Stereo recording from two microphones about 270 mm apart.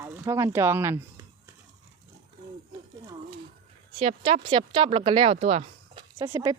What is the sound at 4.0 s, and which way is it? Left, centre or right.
Speech, right.